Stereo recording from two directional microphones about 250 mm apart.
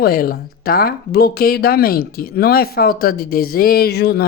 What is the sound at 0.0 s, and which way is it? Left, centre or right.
Speech, left.